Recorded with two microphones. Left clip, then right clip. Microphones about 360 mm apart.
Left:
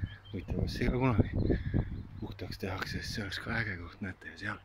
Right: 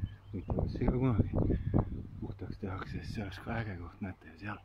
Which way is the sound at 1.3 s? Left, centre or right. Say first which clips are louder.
Even; right.